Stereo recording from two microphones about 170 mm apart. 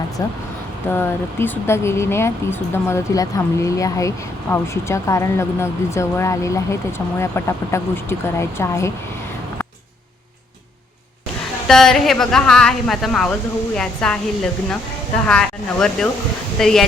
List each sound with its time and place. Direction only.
0.9 s speech: 15° left (ahead or behind)
11.7 s a woman's voice: centre (ahead or behind)